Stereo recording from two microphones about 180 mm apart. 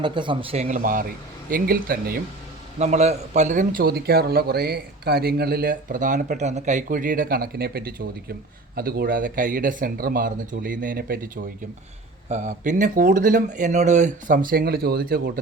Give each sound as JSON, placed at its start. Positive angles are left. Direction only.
{"t": 0.0, "sound": "speech", "side_deg": -25}
{"t": 0.8, "sound": "a man's voice", "side_deg": -50}
{"t": 2.7, "sound": "a man's voice", "side_deg": -40}
{"t": 12.3, "sound": "a man's voice", "side_deg": -40}